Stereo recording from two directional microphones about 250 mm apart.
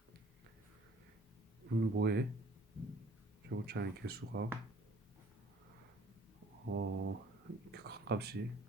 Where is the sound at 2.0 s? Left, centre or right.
Right.